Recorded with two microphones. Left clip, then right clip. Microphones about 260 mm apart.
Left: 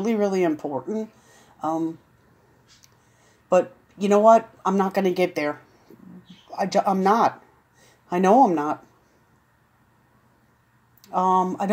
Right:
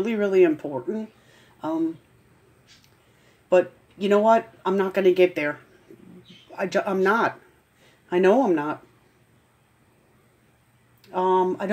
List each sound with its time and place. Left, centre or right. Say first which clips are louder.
0.0 s speech: right 3 dB; left
3.4 s speech: even; left
6.5 s speech: left 3 dB; left
11.1 s speech: left 1 dB; left